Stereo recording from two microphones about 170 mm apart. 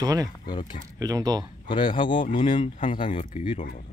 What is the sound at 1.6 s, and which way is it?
Speech, 30° left (ahead or behind).